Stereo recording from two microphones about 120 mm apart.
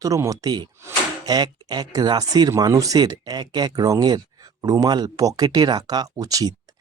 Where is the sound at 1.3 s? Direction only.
35° right (ahead or behind).